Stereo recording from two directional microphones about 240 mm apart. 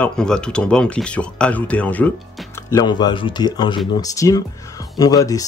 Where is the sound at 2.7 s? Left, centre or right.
Centre.